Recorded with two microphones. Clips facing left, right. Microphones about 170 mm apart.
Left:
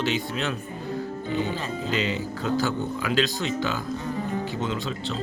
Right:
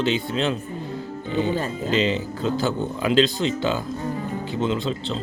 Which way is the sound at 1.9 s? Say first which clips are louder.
Right 5 dB; 25° right (ahead or behind).